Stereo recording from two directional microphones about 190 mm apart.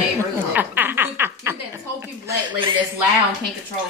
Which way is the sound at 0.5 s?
10° right (ahead or behind).